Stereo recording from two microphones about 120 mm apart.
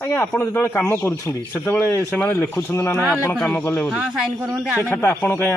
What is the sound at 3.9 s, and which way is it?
Speech, 5° right (ahead or behind).